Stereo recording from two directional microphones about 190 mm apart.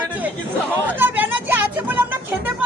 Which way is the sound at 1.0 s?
10° right (ahead or behind).